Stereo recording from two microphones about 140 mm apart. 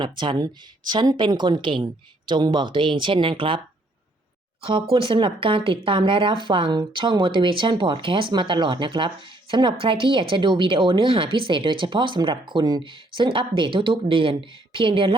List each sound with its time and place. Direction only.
0.0 s speech: 35° right (ahead or behind)
4.6 s speech: 40° right (ahead or behind)